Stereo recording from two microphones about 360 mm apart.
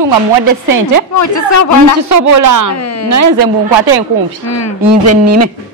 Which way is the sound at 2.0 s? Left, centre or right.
Right.